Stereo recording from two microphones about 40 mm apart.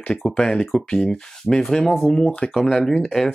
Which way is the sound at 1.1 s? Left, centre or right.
Centre.